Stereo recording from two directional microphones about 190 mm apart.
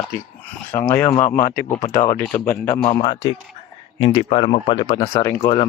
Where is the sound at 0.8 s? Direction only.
10° left (ahead or behind).